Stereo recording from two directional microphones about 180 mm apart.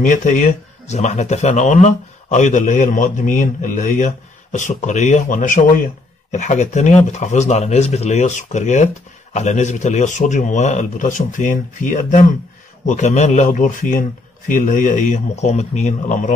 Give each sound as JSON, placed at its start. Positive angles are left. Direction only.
{"t": 0.0, "sound": "speech", "side_deg": 45}